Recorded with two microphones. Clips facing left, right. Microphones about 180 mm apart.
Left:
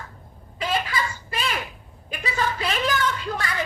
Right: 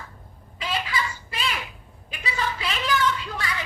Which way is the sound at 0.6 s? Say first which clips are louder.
Left 3 dB; 50° left (ahead or behind).